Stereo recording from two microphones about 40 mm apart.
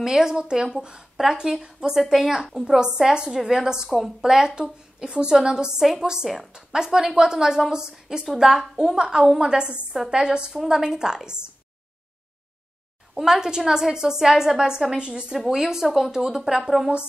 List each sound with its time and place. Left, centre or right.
0.0 s a woman's voice: centre
10.5 s a woman's voice: centre
13.1 s a woman's voice: centre
15.0 s a woman's voice: right
15.3 s a woman's voice: centre